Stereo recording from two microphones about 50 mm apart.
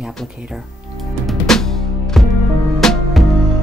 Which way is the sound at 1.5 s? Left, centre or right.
Centre.